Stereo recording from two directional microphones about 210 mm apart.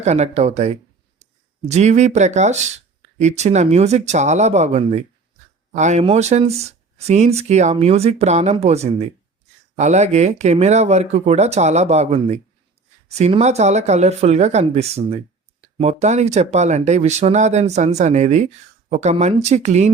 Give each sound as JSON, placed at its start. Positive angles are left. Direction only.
{"t": 0.0, "sound": "speech", "side_deg": -30}